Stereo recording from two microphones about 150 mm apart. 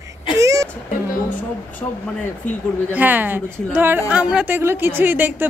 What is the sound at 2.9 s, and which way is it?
A woman's voice, 10° right (ahead or behind).